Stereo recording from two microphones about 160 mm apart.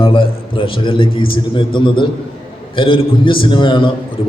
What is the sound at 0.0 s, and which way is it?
A man's voice, 35° left (ahead or behind).